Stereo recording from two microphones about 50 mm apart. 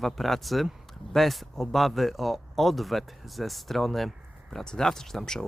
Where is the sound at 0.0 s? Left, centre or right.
Centre.